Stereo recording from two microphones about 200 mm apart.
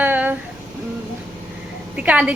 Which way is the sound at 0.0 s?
10° right (ahead or behind).